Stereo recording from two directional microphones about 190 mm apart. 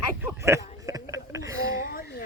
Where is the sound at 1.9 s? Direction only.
50° left (ahead or behind).